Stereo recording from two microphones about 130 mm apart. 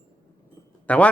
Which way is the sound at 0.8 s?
10° left (ahead or behind).